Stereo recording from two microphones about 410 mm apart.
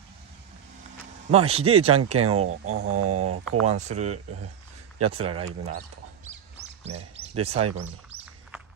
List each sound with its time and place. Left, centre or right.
1.3 s speech: centre
2.6 s speech: right
3.6 s speech: centre
6.8 s speech: centre